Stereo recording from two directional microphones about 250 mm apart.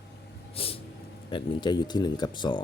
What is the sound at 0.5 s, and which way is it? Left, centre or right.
Vehicle, left.